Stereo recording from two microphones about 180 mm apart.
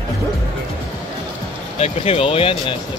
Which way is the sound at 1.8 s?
35° left (ahead or behind).